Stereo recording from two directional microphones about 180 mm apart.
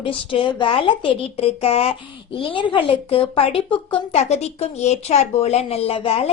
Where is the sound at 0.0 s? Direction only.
30° left (ahead or behind).